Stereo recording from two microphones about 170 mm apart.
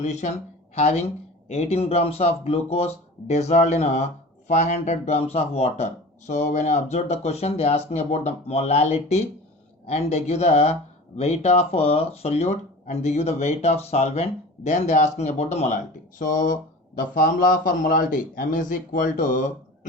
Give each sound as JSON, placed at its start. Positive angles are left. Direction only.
{"t": 0.0, "sound": "speech", "side_deg": 45}